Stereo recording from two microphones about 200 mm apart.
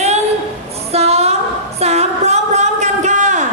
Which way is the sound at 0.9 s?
30° right (ahead or behind).